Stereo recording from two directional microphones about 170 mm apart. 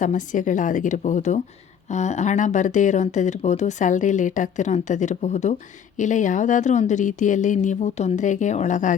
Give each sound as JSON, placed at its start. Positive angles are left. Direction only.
{"t": 0.0, "sound": "speech", "side_deg": 50}